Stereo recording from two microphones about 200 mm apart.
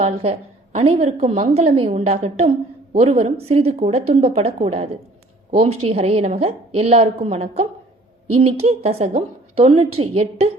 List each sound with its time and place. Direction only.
0.0 s a woman's voice: 30° right (ahead or behind)